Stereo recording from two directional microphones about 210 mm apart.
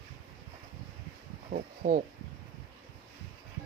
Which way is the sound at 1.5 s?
40° right (ahead or behind).